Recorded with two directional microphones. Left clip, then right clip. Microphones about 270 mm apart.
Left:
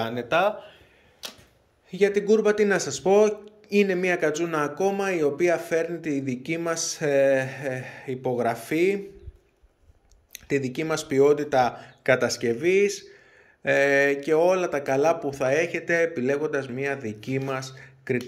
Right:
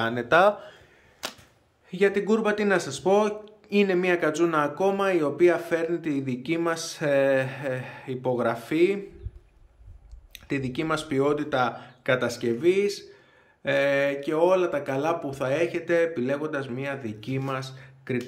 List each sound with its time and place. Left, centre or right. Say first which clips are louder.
0.0 s speech: right 3 dB; centre
1.9 s speech: left 2 dB; centre
10.3 s speech: left 3 dB; centre